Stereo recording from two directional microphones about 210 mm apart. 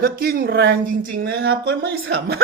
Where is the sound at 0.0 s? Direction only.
45° right (ahead or behind).